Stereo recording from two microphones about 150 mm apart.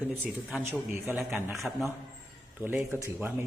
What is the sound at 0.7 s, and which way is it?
Speech, 15° right (ahead or behind).